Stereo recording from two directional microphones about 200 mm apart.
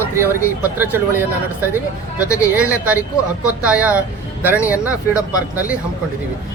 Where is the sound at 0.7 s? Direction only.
10° right (ahead or behind).